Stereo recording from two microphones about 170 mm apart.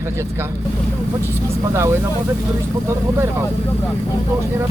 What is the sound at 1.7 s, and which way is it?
Speech, 15° right (ahead or behind).